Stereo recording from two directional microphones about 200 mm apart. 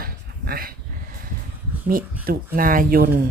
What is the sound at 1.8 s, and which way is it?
Speech, 45° right (ahead or behind).